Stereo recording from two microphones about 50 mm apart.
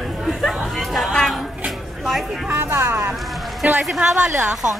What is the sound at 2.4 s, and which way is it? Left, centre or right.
Speech, right.